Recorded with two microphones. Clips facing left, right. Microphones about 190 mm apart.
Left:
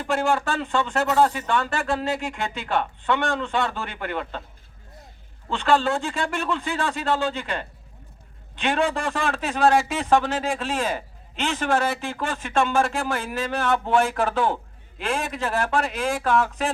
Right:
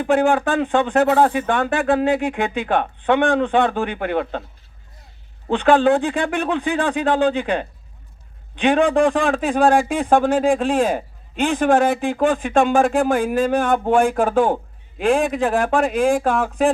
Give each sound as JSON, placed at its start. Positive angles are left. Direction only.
{"t": 0.0, "sound": "a man's voice", "side_deg": -55}
{"t": 5.5, "sound": "a man's voice", "side_deg": -55}